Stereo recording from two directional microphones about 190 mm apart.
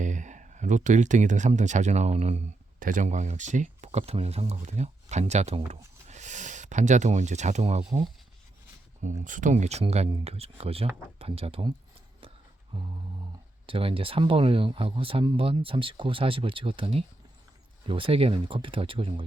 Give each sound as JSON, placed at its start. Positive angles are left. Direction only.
{"t": 0.0, "sound": "speech", "side_deg": -40}
{"t": 13.7, "sound": "speech", "side_deg": -30}